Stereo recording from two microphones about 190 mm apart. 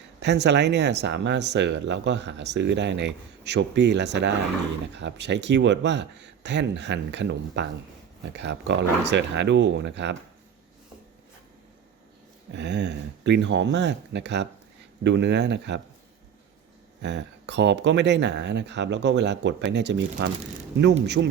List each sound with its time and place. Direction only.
0.2 s speech: 65° right (ahead or behind)
12.5 s speech: 65° right (ahead or behind)
17.0 s speech: 65° right (ahead or behind)